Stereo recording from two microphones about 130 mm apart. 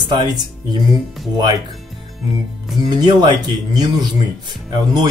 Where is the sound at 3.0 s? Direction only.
35° right (ahead or behind).